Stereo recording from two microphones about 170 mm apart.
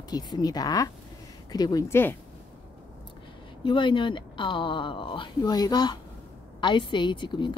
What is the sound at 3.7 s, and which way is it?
Speech, 30° left (ahead or behind).